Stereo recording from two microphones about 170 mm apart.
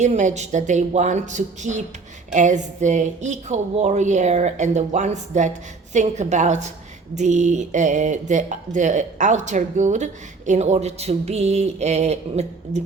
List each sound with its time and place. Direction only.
0.0 s speech: 45° right (ahead or behind)